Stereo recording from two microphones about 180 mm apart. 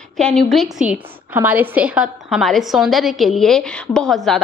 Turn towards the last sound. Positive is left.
turn(degrees=0)  # may be behind; listen again after turning